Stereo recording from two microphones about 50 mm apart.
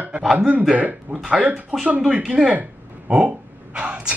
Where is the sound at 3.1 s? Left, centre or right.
Right.